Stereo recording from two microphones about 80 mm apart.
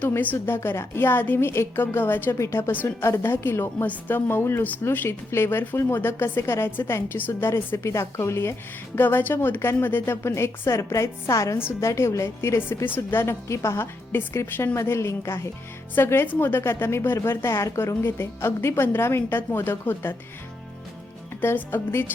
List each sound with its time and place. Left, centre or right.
0.0 s a woman's voice: left
11.5 s a woman's voice: left
21.4 s a woman's voice: left